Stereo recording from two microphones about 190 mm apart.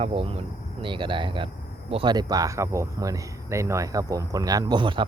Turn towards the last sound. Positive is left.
turn(degrees=-25)  # may be behind; listen again after turning